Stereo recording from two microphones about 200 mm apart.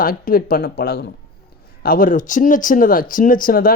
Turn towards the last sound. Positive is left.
turn(degrees=45)  # may be behind; listen again after turning